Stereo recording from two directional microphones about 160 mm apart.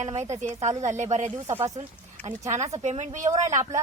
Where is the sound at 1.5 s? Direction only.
20° right (ahead or behind).